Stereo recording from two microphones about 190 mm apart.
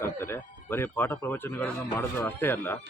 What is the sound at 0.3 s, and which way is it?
Speech, 10° left (ahead or behind).